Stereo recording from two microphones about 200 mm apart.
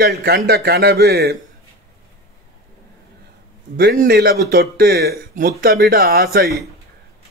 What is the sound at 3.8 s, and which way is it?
A man's voice, 50° right (ahead or behind).